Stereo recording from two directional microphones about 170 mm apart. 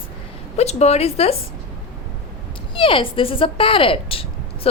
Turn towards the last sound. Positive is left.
turn(degrees=30)  # may be behind; listen again after turning